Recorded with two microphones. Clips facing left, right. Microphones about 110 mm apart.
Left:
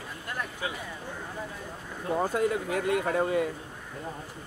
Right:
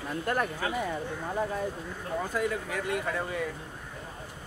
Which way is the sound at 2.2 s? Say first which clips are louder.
Left 4 dB; 30° left (ahead or behind).